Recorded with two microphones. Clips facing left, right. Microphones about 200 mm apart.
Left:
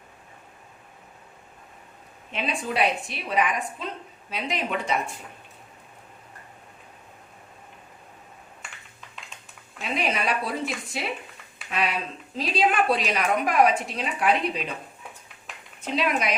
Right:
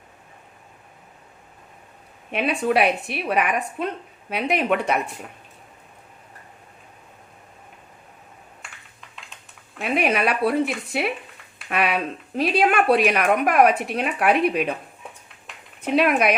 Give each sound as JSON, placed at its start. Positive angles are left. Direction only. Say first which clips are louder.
{"t": 2.3, "sound": "speech", "louder": "right 8 dB", "side_deg": -60}
{"t": 8.6, "sound": "typing", "louder": "even", "side_deg": 0}
{"t": 9.8, "sound": "speech", "louder": "right 6 dB", "side_deg": -60}
{"t": 15.5, "sound": "a sound", "louder": "left 1 dB", "side_deg": 0}
{"t": 15.9, "sound": "speech", "louder": "right 7 dB", "side_deg": -60}